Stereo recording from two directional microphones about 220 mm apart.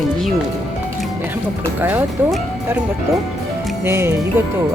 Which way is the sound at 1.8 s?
10° right (ahead or behind).